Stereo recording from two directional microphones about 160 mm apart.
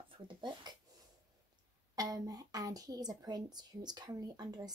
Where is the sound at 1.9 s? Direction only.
25° right (ahead or behind).